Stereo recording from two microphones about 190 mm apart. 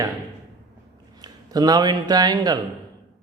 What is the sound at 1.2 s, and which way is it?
Speech, 20° right (ahead or behind).